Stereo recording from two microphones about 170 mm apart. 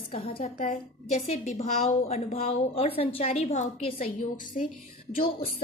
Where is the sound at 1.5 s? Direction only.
40° left (ahead or behind).